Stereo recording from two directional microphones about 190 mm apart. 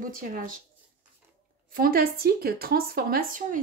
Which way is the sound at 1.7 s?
50° right (ahead or behind).